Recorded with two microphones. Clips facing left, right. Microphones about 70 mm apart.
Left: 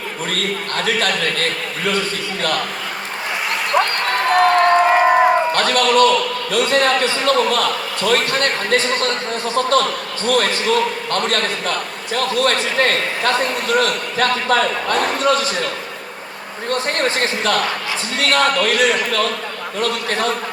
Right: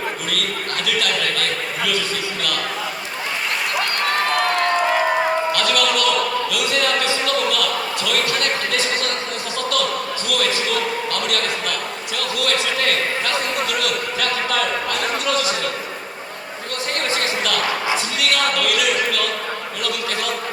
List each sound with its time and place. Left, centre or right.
0.3 s a man's voice: left
4.3 s a man's voice: left